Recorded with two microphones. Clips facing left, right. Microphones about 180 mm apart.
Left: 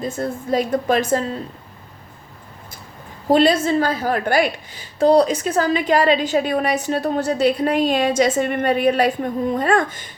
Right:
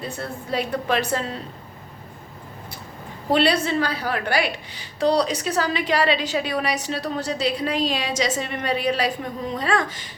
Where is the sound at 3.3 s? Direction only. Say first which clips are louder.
Left 5 dB; 45° left (ahead or behind).